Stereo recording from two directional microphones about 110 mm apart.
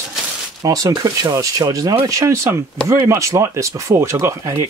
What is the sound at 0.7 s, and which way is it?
Speech, 30° right (ahead or behind).